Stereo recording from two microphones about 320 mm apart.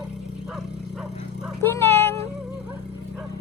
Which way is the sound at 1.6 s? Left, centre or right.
Centre.